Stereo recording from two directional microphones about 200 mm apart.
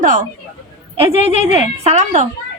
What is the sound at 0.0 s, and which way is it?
Speech, 40° right (ahead or behind).